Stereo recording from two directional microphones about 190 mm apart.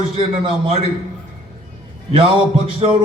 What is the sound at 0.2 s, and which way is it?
Speech, 30° right (ahead or behind).